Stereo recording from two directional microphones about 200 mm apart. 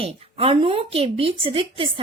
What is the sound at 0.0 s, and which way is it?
A woman's voice, 30° right (ahead or behind).